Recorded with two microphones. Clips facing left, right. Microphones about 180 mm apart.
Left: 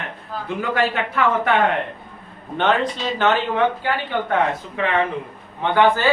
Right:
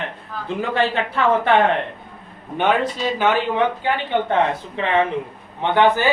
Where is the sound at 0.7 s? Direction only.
30° right (ahead or behind).